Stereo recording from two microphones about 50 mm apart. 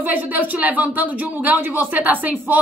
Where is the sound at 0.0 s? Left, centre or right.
Right.